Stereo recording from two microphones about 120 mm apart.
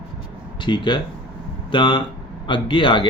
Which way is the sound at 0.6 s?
40° left (ahead or behind).